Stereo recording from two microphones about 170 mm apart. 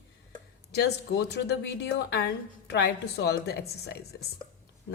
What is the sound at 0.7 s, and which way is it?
A woman's voice, 75° left (ahead or behind).